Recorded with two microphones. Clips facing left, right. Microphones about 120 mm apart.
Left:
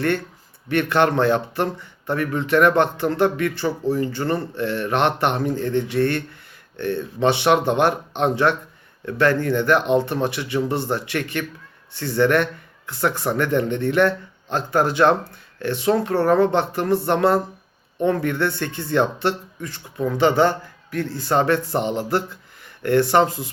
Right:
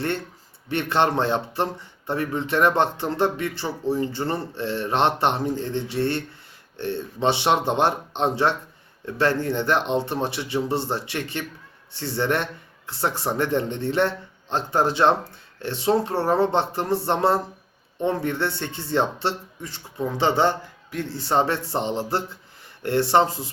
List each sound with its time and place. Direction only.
0.7 s speech: 25° right (ahead or behind)